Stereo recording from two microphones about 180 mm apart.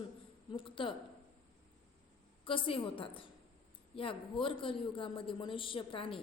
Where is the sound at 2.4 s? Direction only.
30° left (ahead or behind).